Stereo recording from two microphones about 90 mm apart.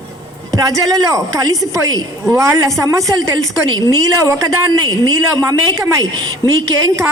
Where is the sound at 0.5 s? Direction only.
40° right (ahead or behind).